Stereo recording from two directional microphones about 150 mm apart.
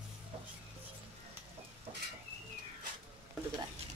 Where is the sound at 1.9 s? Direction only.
45° right (ahead or behind).